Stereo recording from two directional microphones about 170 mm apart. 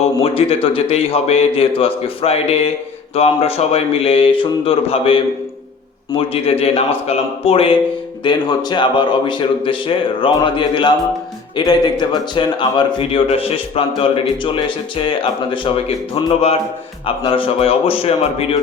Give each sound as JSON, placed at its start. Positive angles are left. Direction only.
{"t": 0.0, "sound": "a man's voice", "side_deg": 35}
{"t": 17.2, "sound": "a man's voice", "side_deg": 30}